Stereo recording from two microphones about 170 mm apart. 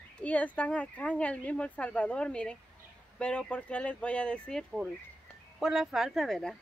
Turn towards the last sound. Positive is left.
turn(degrees=0)  # may be behind; listen again after turning